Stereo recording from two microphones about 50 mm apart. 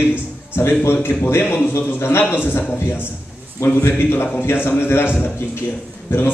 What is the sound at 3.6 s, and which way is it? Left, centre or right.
Speech, left.